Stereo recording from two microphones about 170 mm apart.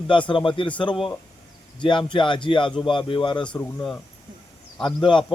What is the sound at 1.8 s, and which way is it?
A man's voice, 30° left (ahead or behind).